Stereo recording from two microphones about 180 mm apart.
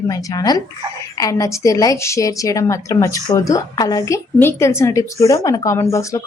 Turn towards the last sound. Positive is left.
turn(degrees=15)  # may be behind; listen again after turning